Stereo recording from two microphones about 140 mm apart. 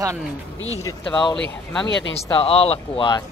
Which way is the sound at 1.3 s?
5° left (ahead or behind).